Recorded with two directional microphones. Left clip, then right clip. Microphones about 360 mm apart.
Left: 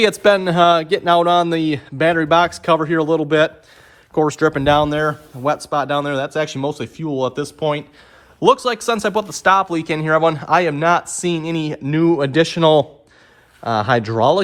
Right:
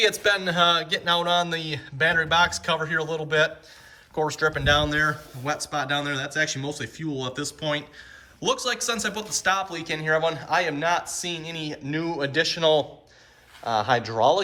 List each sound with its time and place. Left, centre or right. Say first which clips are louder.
0.0 s speech: left 8 dB; centre